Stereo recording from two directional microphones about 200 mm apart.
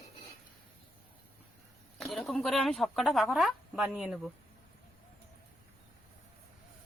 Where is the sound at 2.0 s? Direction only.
Centre (ahead or behind).